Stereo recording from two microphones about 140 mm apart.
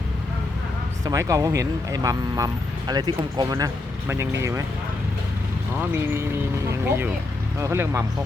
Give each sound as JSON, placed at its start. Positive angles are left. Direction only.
{"t": 1.0, "sound": "speech", "side_deg": -25}
{"t": 6.7, "sound": "speech", "side_deg": -15}